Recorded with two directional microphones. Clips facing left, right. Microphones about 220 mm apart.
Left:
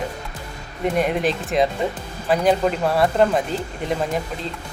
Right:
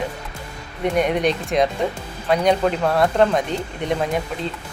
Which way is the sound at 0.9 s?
Centre (ahead or behind).